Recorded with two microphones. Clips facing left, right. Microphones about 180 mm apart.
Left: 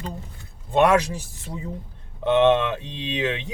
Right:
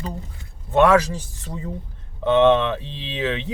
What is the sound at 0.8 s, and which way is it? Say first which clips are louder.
Speech: right 2 dB; 10° left (ahead or behind).